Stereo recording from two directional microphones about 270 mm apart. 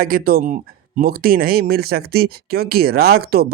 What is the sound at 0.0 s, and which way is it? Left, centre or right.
Speech, right.